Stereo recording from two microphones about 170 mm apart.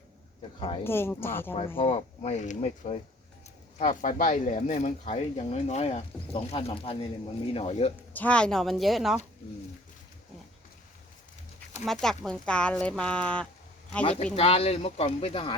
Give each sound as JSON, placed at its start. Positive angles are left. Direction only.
{"t": 0.9, "sound": "speech", "side_deg": 15}
{"t": 1.5, "sound": "speech", "side_deg": 35}
{"t": 8.1, "sound": "speech", "side_deg": 10}
{"t": 11.9, "sound": "speech", "side_deg": 0}
{"t": 14.0, "sound": "speech", "side_deg": 35}